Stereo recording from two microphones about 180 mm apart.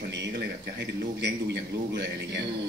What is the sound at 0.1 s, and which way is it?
A man's voice, 70° right (ahead or behind).